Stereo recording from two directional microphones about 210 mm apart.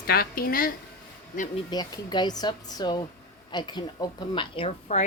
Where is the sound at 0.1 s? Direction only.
45° left (ahead or behind).